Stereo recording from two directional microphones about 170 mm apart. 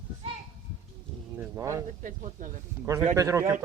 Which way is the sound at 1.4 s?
15° right (ahead or behind).